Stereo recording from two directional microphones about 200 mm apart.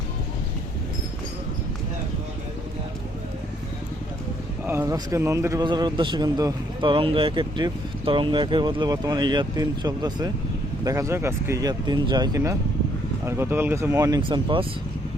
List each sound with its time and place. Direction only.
4.6 s speech: 10° right (ahead or behind)